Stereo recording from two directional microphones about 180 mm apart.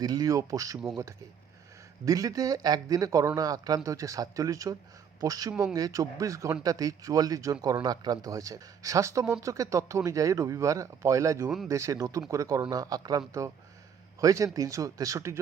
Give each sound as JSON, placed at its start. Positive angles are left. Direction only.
{"t": 0.0, "sound": "speech", "side_deg": -20}
{"t": 2.0, "sound": "speech", "side_deg": -20}